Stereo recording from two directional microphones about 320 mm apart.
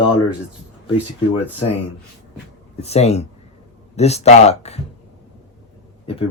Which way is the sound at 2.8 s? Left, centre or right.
Centre.